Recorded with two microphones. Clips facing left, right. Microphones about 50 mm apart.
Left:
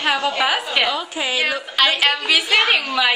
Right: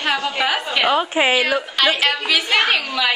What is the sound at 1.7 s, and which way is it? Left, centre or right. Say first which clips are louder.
A woman's voice: left 3 dB; centre.